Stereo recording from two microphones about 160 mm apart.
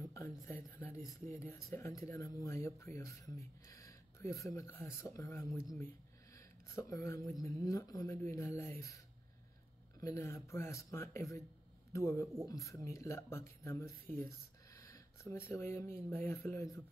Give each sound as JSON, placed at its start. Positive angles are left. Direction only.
{"t": 0.4, "sound": "speech", "side_deg": 15}